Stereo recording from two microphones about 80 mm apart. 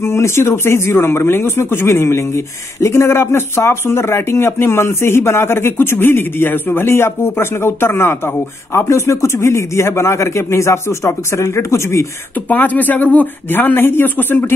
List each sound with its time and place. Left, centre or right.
0.0 s speech: left
12.4 s speech: left